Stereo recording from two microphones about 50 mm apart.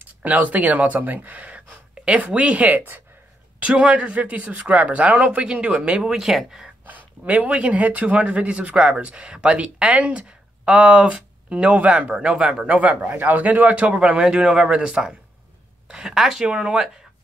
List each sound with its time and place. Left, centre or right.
0.2 s speech: right
1.7 s a sound: centre
2.2 s speech: right
3.5 s speech: right; by 6.7 s centre
6.9 s speech: right
13.1 s speech: right
13.9 s speech: centre